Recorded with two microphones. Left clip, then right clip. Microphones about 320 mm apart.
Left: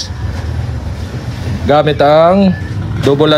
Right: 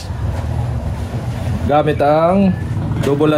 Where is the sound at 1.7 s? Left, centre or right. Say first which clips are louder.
Left 5 dB; left.